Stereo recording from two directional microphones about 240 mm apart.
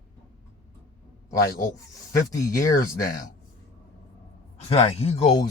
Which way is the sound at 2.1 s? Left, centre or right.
Centre.